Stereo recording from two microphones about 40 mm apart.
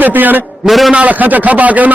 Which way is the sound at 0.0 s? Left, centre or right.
Right.